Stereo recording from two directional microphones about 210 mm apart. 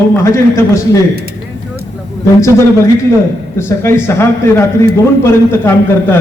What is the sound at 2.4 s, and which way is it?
A man's voice, 15° left (ahead or behind).